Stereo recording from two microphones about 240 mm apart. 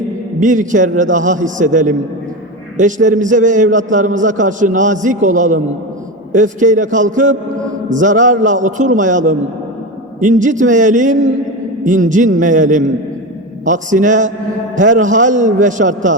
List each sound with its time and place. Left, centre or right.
0.3 s a man's voice: right